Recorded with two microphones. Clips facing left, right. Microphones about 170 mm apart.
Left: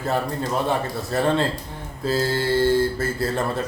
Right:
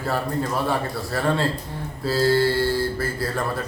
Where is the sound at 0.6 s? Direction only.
20° left (ahead or behind).